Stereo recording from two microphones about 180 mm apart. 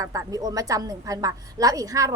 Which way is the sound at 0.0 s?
20° right (ahead or behind).